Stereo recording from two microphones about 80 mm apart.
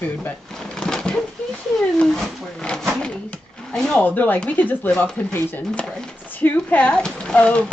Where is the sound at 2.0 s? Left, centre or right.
Centre.